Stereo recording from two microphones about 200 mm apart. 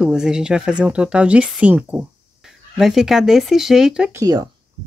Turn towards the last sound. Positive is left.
turn(degrees=-20)  # may be behind; listen again after turning